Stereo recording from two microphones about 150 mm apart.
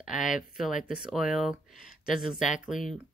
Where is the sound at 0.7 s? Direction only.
65° left (ahead or behind).